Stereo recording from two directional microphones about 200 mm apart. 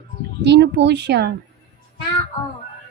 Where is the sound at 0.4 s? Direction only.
60° right (ahead or behind).